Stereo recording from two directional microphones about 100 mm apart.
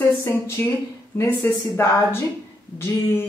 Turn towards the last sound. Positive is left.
turn(degrees=25)  # may be behind; listen again after turning